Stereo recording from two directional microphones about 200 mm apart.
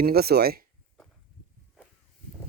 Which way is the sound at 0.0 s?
50° right (ahead or behind).